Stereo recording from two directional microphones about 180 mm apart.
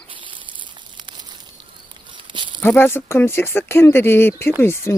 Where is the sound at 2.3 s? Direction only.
25° right (ahead or behind).